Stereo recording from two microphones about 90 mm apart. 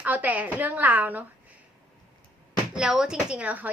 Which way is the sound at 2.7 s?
5° right (ahead or behind).